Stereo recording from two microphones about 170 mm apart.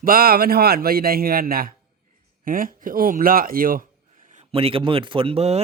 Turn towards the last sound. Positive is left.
turn(degrees=-35)  # may be behind; listen again after turning